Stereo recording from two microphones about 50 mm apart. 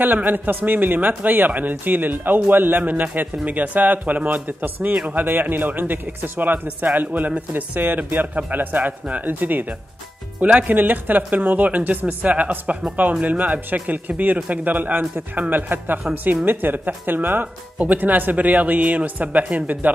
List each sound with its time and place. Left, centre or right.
0.0 s speech: right